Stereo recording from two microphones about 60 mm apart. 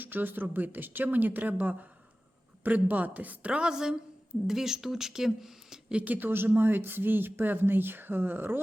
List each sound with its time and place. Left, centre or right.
0.0 s a woman's voice: right; by 5.8 s centre
5.9 s speech: right